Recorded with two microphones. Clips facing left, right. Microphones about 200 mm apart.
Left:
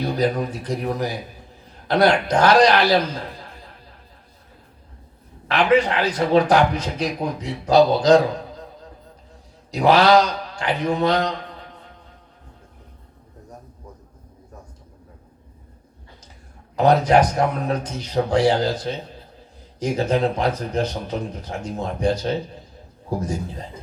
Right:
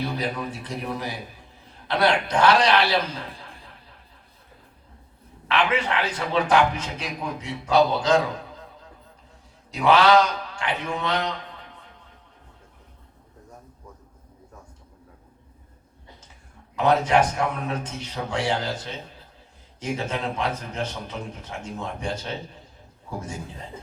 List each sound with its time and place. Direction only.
0.0 s a man's voice: 40° left (ahead or behind)
5.5 s a man's voice: 40° left (ahead or behind)
9.7 s a man's voice: 35° left (ahead or behind)
16.7 s a man's voice: 35° left (ahead or behind)